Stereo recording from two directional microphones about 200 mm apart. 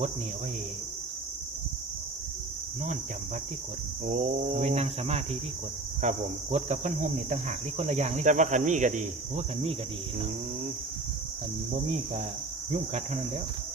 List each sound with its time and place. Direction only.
4.0 s cricket: 35° right (ahead or behind)